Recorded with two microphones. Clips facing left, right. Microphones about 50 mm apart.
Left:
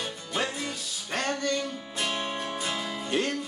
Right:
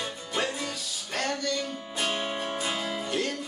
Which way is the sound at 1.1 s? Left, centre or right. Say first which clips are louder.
Left 1 dB; left.